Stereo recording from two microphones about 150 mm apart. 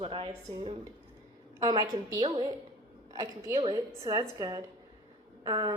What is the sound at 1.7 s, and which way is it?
A woman's voice, 25° right (ahead or behind).